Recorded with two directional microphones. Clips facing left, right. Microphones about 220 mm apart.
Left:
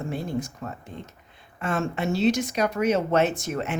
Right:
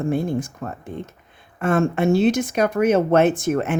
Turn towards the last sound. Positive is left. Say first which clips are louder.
# right 8 dB
turn(degrees=-55)  # may be behind; listen again after turning